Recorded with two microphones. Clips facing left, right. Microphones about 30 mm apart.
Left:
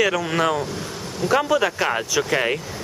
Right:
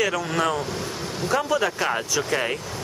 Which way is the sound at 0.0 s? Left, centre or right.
Centre.